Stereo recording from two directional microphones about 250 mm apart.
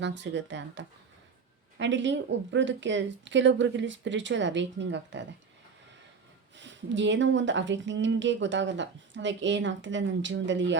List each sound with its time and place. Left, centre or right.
0.0 s speech: right
6.6 s speech: right